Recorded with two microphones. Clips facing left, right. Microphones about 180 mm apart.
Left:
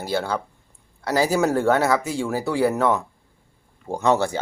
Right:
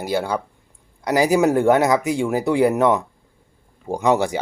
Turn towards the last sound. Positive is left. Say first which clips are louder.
# right 2 dB
turn(degrees=-15)  # may be behind; listen again after turning